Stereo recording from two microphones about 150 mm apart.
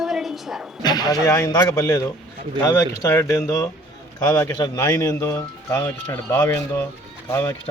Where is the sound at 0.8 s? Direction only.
25° left (ahead or behind).